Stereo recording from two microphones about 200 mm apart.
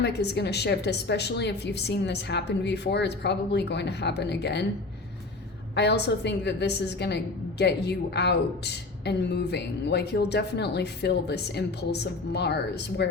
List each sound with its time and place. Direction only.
0.0 s a woman's voice: 55° left (ahead or behind)
5.7 s a woman's voice: 55° left (ahead or behind)